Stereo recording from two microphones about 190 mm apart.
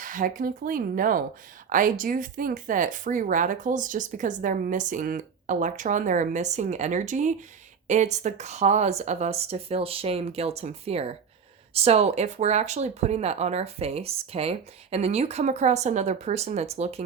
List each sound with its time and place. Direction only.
0.0 s speech: 45° right (ahead or behind)